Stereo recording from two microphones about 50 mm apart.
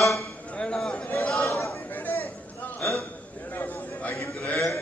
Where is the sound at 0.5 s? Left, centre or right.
Centre.